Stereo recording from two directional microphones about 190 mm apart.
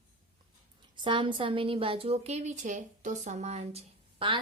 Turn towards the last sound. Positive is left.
turn(degrees=-30)  # may be behind; listen again after turning